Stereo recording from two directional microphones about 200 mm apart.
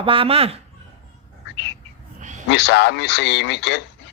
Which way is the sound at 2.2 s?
40° right (ahead or behind).